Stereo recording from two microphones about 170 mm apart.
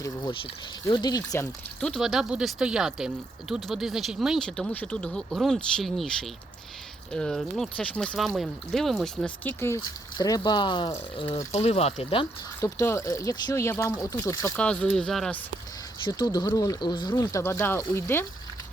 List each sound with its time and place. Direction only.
0.0 s speech: 25° left (ahead or behind)
1.8 s speech: centre (ahead or behind); by 12.3 s 35° left (ahead or behind)
12.5 s speech: 15° left (ahead or behind)
14.6 s speech: 5° left (ahead or behind)
16.0 s speech: 25° left (ahead or behind)